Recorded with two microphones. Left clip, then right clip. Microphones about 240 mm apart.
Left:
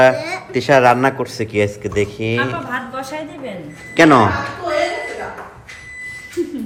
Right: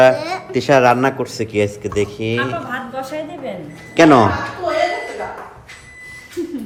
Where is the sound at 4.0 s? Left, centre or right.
Centre.